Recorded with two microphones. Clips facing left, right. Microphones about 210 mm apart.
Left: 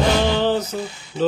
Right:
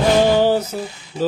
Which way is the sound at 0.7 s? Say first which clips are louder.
Even; 10° right (ahead or behind).